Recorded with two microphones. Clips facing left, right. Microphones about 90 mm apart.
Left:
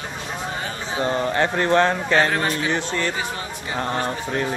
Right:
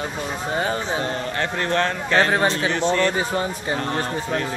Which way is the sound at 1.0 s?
20° left (ahead or behind).